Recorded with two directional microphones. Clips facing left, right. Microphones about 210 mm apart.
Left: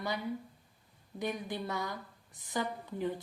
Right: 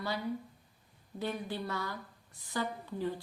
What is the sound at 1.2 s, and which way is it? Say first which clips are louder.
Speech: even; 20° left (ahead or behind).